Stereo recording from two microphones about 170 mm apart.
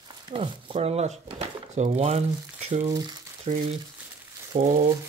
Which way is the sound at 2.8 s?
25° right (ahead or behind).